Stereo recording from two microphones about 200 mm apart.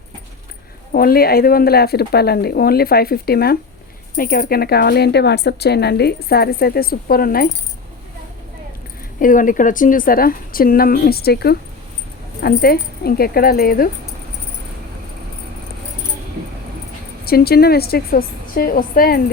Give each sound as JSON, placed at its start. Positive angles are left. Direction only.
{"t": 0.9, "sound": "speech", "side_deg": 50}
{"t": 9.2, "sound": "speech", "side_deg": 40}
{"t": 17.2, "sound": "speech", "side_deg": 50}